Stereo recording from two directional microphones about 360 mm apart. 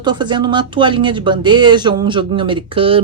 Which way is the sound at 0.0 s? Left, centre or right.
Centre.